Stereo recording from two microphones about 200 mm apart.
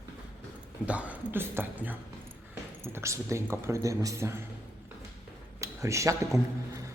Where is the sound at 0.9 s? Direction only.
5° right (ahead or behind).